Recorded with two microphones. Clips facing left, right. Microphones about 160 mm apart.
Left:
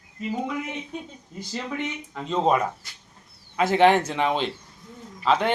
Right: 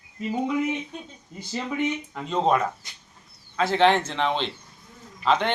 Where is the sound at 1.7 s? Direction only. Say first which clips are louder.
Right 7 dB; 10° right (ahead or behind).